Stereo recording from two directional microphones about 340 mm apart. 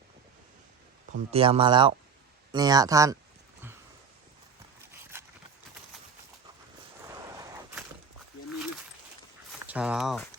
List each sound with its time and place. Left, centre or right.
1.3 s speech: centre
5.1 s a sound: centre
9.5 s speech: centre